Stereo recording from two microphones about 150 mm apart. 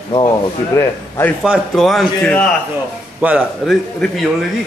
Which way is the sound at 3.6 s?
Centre (ahead or behind).